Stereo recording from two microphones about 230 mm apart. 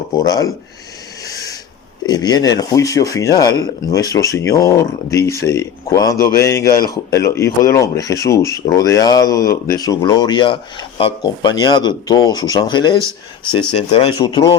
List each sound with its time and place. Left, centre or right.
0.3 s speech: centre
2.0 s speech: centre